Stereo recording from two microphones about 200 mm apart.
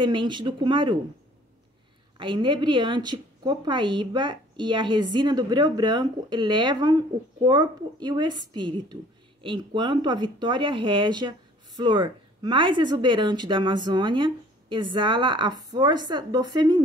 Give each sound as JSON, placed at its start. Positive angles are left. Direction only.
{"t": 0.0, "sound": "speech", "side_deg": -25}
{"t": 2.1, "sound": "speech", "side_deg": -25}